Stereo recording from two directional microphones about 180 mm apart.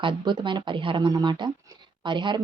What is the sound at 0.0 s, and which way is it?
A woman's voice, 25° right (ahead or behind).